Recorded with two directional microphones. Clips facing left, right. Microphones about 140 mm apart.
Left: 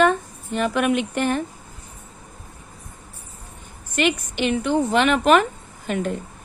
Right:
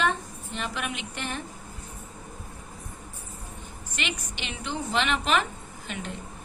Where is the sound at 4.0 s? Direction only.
50° left (ahead or behind).